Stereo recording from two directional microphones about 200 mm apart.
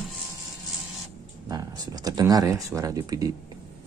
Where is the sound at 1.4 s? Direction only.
20° right (ahead or behind).